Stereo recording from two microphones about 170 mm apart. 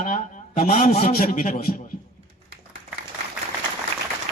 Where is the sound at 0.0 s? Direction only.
45° left (ahead or behind).